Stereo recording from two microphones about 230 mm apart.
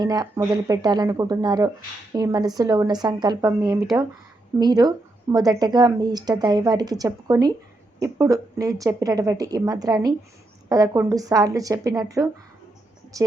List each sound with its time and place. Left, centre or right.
0.0 s speech: centre